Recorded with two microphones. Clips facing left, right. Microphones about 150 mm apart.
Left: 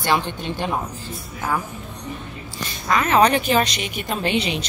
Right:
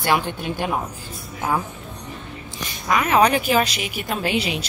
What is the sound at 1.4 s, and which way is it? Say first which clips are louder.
Speech: right 2 dB; 20° right (ahead or behind).